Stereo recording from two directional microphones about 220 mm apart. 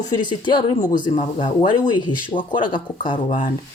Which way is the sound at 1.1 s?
25° left (ahead or behind).